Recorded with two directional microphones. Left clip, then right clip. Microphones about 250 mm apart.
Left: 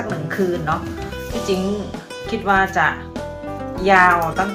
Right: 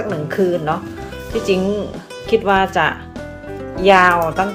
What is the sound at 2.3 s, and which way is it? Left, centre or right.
Speech, right.